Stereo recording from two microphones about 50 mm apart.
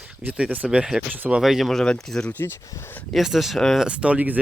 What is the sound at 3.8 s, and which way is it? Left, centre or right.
Speech, right.